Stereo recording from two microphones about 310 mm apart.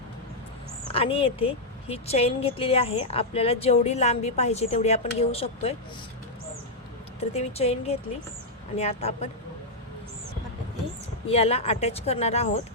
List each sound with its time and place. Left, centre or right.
0.9 s speech: centre
7.2 s speech: centre
11.3 s speech: centre